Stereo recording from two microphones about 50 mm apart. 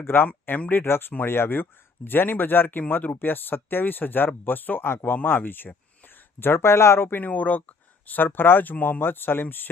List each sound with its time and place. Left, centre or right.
0.0 s speech: left
7.2 s speech: left